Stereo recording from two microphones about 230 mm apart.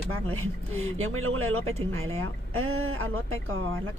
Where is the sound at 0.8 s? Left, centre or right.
Right.